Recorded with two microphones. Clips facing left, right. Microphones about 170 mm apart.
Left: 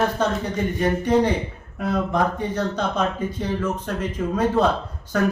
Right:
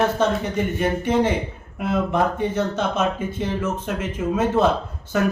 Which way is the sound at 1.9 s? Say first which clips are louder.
Right 1 dB; 5° right (ahead or behind).